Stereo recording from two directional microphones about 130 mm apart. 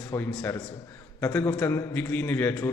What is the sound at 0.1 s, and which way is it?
A man's voice, 20° left (ahead or behind).